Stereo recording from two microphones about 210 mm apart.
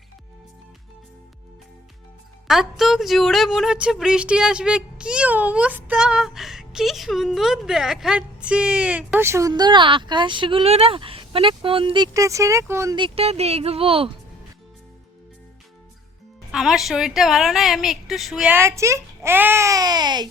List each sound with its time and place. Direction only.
2.5 s speech: centre (ahead or behind)
13.1 s speech: 30° right (ahead or behind)
16.5 s speech: centre (ahead or behind); by 20.2 s 20° right (ahead or behind)